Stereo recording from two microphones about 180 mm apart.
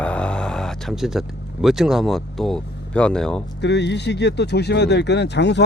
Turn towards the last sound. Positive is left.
turn(degrees=70)  # may be behind; listen again after turning